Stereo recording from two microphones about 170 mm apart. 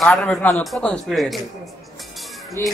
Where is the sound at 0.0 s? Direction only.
5° left (ahead or behind).